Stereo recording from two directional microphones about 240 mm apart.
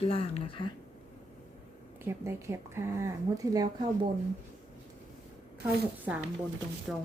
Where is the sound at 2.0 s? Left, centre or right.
Centre.